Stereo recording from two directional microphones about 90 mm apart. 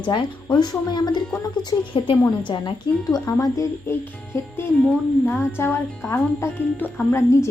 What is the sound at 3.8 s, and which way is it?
Music, 25° left (ahead or behind).